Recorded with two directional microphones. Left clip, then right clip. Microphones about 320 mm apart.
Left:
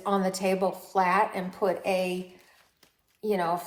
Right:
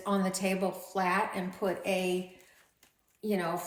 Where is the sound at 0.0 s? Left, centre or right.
Centre.